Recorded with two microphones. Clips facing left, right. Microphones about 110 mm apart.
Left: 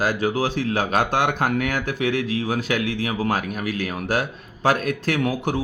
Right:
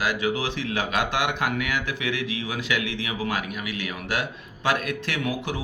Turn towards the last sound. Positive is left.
turn(degrees=45)  # may be behind; listen again after turning